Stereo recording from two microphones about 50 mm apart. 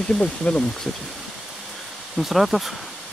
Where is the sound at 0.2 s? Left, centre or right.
Left.